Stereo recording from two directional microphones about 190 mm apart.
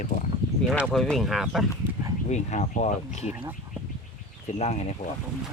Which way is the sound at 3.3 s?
10° right (ahead or behind).